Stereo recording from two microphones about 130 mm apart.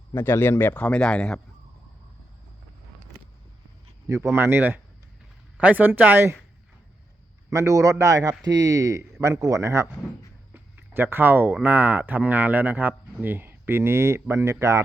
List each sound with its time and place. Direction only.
0.1 s a man's voice: 15° left (ahead or behind)
4.0 s a man's voice: 20° right (ahead or behind)
7.5 s speech: 25° right (ahead or behind)
10.5 s a sound: 15° right (ahead or behind)
11.6 s a man's voice: 15° right (ahead or behind)